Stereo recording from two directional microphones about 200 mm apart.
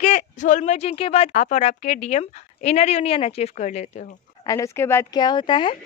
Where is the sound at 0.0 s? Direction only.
35° left (ahead or behind).